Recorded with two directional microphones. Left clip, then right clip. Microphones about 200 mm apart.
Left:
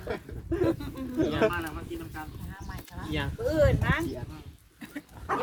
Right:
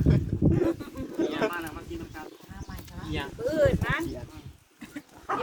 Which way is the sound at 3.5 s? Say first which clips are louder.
Right 1 dB; 50° left (ahead or behind).